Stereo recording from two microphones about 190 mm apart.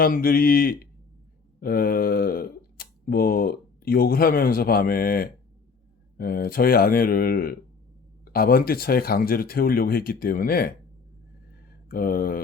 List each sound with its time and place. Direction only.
0.0 s speech: 50° left (ahead or behind)
11.9 s speech: 50° left (ahead or behind)